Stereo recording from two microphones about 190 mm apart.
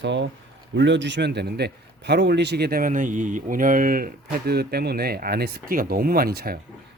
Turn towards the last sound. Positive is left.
turn(degrees=-55)  # may be behind; listen again after turning